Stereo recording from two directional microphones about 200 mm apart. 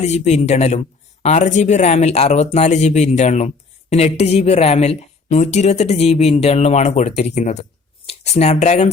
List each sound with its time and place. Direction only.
0.0 s speech: 35° left (ahead or behind)